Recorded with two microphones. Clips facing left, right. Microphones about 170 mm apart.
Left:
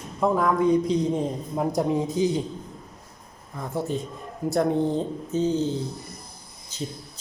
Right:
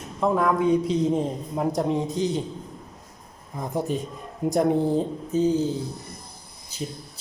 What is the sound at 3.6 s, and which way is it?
Speech, 15° right (ahead or behind).